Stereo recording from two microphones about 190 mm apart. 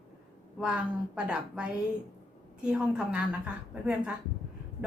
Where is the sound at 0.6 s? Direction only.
5° right (ahead or behind).